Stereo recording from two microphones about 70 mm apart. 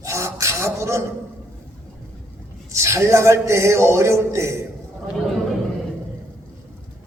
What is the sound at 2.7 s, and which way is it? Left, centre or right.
A man's voice, right.